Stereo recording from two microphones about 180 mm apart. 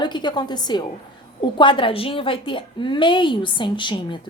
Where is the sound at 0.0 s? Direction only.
25° left (ahead or behind).